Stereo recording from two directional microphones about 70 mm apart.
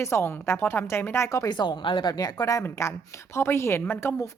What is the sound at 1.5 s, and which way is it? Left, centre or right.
Speech, left.